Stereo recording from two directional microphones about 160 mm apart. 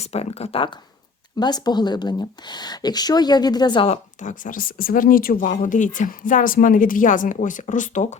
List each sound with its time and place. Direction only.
0.0 s speech: 40° left (ahead or behind)